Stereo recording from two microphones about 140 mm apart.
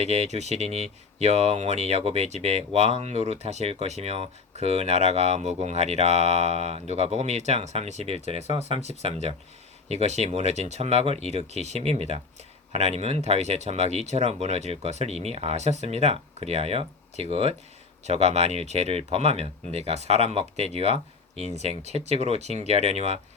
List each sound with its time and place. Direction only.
0.0 s speech: 50° right (ahead or behind)